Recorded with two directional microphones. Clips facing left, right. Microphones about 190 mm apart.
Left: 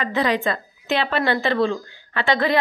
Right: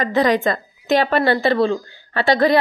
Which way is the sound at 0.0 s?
40° right (ahead or behind).